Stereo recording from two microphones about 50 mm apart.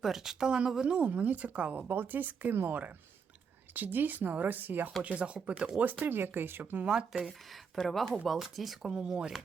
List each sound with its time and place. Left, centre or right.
0.0 s speech: centre; by 1.8 s right
1.9 s speech: right
5.0 s speech: right
5.8 s speech: right
6.8 s speech: centre
8.9 s speech: centre